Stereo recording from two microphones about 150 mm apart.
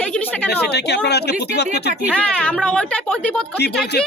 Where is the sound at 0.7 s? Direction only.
90° left.